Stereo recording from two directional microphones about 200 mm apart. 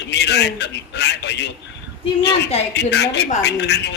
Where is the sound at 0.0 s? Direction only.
60° left (ahead or behind).